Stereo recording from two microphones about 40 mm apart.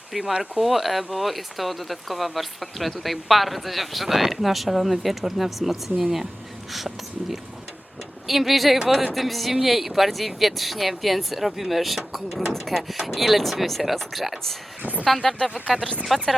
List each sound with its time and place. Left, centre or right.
0.1 s speech: centre
12.5 s speech: centre
14.8 s speech: right
15.2 s speech: centre
15.7 s speech: centre
16.0 s speech: centre